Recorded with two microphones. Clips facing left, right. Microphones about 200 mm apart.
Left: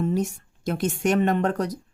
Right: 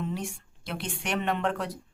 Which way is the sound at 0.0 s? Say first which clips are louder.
Left 9 dB; 40° left (ahead or behind).